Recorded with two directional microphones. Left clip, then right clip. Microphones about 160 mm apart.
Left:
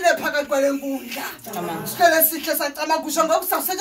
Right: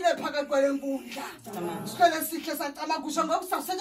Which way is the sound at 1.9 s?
20° left (ahead or behind).